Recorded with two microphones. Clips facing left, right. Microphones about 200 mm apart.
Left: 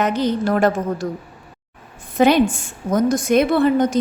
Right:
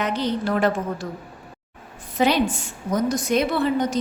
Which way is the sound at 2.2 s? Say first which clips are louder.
Left 5 dB; 50° left (ahead or behind).